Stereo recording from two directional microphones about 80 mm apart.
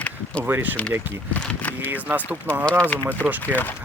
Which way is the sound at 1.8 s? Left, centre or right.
Right.